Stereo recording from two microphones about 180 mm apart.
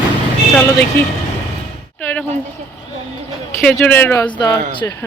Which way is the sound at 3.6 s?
5° left (ahead or behind).